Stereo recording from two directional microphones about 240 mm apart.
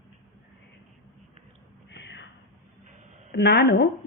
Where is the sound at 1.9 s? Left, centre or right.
Left.